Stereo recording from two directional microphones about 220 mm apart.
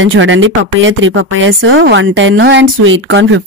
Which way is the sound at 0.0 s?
60° right (ahead or behind).